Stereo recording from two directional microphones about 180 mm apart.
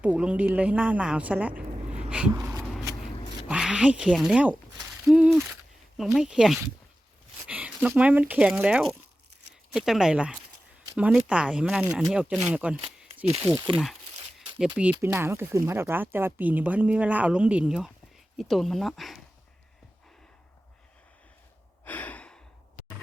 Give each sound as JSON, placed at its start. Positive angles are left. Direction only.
{"t": 0.0, "sound": "speech", "side_deg": -5}
{"t": 2.0, "sound": "a sound", "side_deg": -5}
{"t": 2.3, "sound": "shuffling cards", "side_deg": -15}
{"t": 3.5, "sound": "speech", "side_deg": -5}
{"t": 5.0, "sound": "a sound", "side_deg": -5}
{"t": 6.1, "sound": "speech", "side_deg": -5}
{"t": 13.5, "sound": "speech", "side_deg": -25}
{"t": 14.6, "sound": "speech", "side_deg": -5}
{"t": 21.8, "sound": "gasp", "side_deg": 10}